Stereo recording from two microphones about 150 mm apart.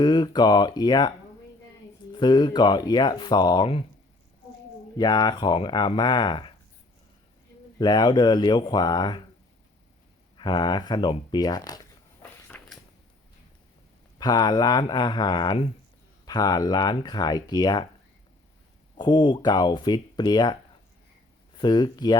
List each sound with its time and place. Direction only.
0.0 s speech: 30° left (ahead or behind)
2.1 s speech: 30° left (ahead or behind)
4.9 s speech: 25° left (ahead or behind)
7.8 s speech: 30° left (ahead or behind)
10.3 s speech: 30° left (ahead or behind)
12.5 s a sound: 5° left (ahead or behind)
14.2 s speech: 25° left (ahead or behind)
18.9 s speech: 30° left (ahead or behind)
21.6 s speech: 30° left (ahead or behind)